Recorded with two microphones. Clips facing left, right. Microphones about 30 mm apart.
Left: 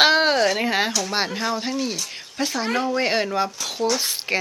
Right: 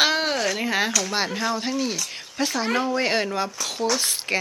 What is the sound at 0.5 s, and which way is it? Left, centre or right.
Speech, left.